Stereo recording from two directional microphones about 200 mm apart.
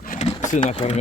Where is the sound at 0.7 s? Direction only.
35° left (ahead or behind).